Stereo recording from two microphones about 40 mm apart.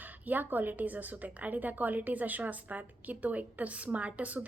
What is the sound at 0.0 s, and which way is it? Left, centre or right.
A woman's voice, right.